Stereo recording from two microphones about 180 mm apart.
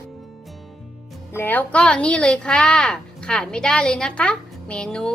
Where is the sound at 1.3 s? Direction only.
10° left (ahead or behind).